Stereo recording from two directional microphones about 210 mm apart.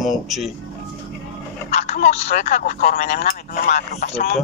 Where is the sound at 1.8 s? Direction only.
30° left (ahead or behind).